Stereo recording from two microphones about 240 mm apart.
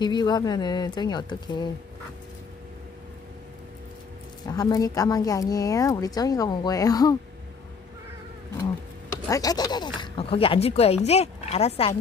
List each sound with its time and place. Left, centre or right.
0.0 s speech: centre
4.5 s speech: centre
9.3 s speech: centre